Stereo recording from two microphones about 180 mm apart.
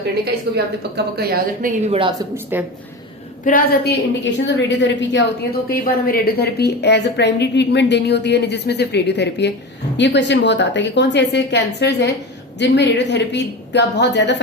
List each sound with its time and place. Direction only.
0.5 s a woman's voice: 65° right (ahead or behind)
1.9 s speech: 30° right (ahead or behind)
2.3 s a woman's voice: 10° right (ahead or behind)
3.4 s a woman's voice: 55° left (ahead or behind); by 14.3 s 75° left (ahead or behind)